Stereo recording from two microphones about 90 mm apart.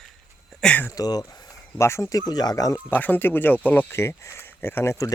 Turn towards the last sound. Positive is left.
turn(degrees=35)  # may be behind; listen again after turning